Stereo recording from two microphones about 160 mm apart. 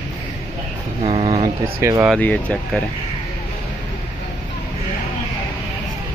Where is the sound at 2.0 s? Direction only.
5° left (ahead or behind).